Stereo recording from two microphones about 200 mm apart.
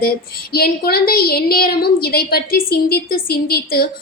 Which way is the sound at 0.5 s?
50° left (ahead or behind).